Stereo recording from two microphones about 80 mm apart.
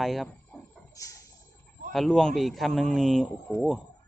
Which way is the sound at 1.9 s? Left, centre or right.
Centre.